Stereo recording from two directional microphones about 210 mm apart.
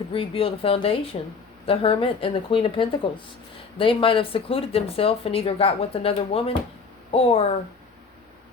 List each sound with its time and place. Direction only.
0.1 s speech: 25° left (ahead or behind)